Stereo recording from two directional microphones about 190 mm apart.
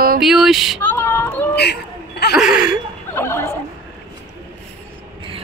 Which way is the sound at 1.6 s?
60° left (ahead or behind).